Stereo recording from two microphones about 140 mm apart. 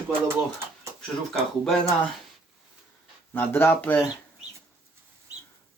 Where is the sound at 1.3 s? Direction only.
5° left (ahead or behind).